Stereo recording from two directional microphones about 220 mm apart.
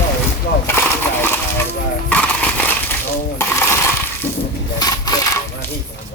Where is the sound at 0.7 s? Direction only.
10° left (ahead or behind).